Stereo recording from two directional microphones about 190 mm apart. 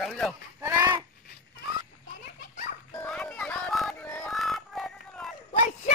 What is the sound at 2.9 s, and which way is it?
Music, 5° left (ahead or behind).